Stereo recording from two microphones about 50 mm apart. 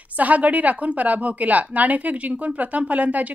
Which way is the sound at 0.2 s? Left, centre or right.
Right.